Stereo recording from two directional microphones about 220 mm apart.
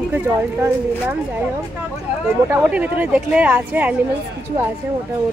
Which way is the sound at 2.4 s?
5° right (ahead or behind).